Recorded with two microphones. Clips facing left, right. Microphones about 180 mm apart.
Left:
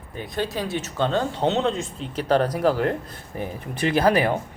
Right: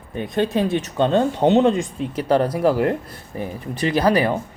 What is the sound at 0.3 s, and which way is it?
Speech, 20° right (ahead or behind).